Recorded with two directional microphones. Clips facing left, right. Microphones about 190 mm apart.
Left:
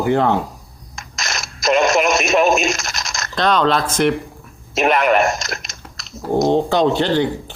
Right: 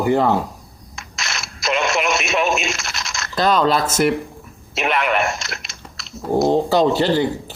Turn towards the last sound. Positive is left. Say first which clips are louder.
# even
turn(degrees=-5)  # may be behind; listen again after turning